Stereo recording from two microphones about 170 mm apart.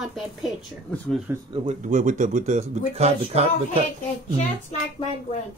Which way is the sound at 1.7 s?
45° right (ahead or behind).